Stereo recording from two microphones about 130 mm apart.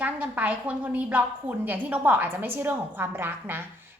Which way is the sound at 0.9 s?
10° right (ahead or behind).